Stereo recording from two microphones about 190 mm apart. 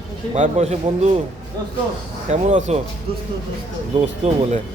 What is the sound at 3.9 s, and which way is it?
Speech, 35° right (ahead or behind).